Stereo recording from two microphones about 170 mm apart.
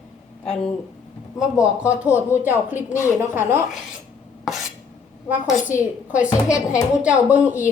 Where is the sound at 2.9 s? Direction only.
15° left (ahead or behind).